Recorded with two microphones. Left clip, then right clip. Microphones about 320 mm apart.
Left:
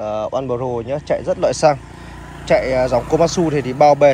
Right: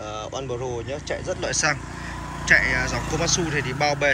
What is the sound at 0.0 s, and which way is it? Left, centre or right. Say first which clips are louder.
Speech: left 10 dB; left.